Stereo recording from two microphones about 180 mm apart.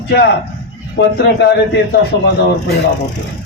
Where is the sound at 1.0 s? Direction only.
70° left (ahead or behind).